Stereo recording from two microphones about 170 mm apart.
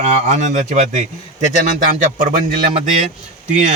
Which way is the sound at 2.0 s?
45° right (ahead or behind).